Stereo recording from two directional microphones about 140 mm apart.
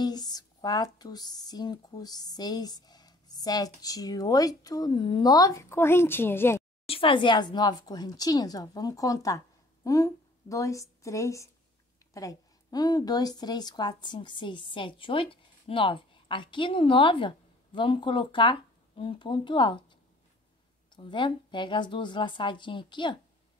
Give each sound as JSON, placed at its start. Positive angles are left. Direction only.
{"t": 0.0, "sound": "speech", "side_deg": 30}
{"t": 6.9, "sound": "a woman's voice", "side_deg": 40}